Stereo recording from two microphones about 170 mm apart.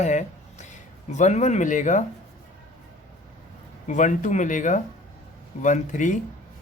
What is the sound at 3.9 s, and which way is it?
A man's voice, 45° left (ahead or behind).